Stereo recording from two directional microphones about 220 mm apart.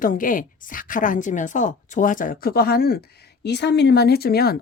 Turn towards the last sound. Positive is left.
turn(degrees=45)  # may be behind; listen again after turning